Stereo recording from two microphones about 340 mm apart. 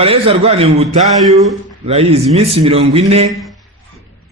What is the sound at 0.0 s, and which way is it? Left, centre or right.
Speech, centre.